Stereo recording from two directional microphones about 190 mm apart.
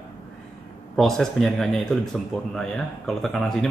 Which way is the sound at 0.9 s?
Centre (ahead or behind).